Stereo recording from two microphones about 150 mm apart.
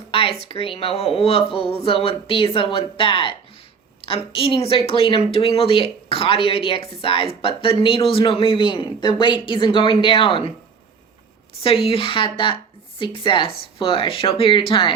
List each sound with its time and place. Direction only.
0.1 s a man's voice: 40° left (ahead or behind)
11.9 s a man's voice: 35° left (ahead or behind)